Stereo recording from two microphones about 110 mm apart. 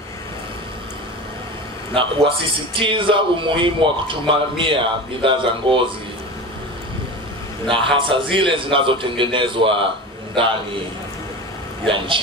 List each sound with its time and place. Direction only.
2.0 s a man's voice: 50° right (ahead or behind)
7.6 s a man's voice: 50° right (ahead or behind)
11.8 s a man's voice: 50° right (ahead or behind)